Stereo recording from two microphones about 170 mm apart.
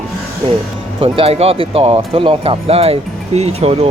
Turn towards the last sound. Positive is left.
turn(degrees=-35)  # may be behind; listen again after turning